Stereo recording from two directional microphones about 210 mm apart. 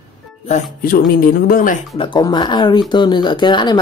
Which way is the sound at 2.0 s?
20° left (ahead or behind).